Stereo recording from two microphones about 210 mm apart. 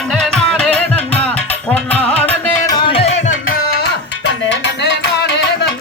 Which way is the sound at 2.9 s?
30° left (ahead or behind).